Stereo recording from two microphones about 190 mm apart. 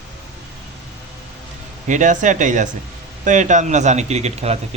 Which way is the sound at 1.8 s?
40° right (ahead or behind).